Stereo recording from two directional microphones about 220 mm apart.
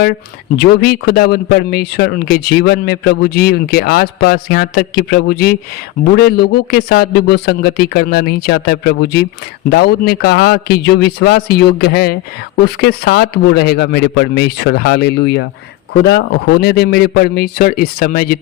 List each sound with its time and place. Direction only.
0.5 s a man's voice: 45° left (ahead or behind)